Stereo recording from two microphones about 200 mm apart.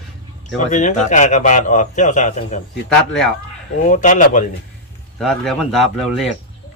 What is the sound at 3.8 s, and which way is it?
Speech, 40° left (ahead or behind).